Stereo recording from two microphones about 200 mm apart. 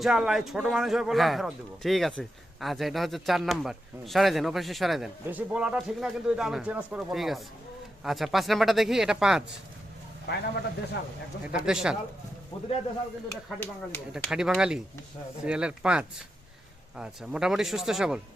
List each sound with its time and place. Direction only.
0.0 s a man's voice: 5° right (ahead or behind)
10.3 s a man's voice: 55° left (ahead or behind)
11.4 s a man's voice: 5° right (ahead or behind)
13.2 s speech: 10° left (ahead or behind)
14.1 s a man's voice: 5° right (ahead or behind)